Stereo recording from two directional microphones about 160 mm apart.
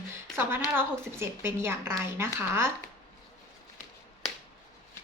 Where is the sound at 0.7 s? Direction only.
15° right (ahead or behind).